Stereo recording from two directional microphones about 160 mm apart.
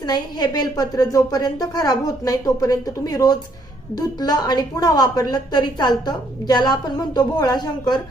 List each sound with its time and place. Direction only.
0.0 s a woman's voice: 25° left (ahead or behind)